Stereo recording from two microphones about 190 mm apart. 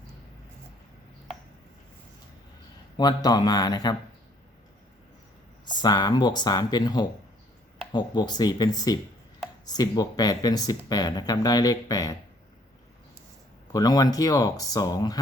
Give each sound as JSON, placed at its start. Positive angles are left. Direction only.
{"t": 3.0, "sound": "speech", "side_deg": 20}
{"t": 5.7, "sound": "speech", "side_deg": 20}
{"t": 13.7, "sound": "speech", "side_deg": 20}